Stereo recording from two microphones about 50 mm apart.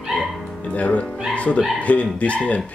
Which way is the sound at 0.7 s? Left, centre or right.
Left.